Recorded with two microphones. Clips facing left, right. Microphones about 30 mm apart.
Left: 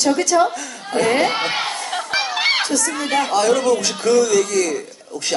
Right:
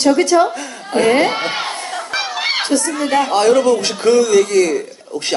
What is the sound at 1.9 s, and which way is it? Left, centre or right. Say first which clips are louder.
Crowd: even; left.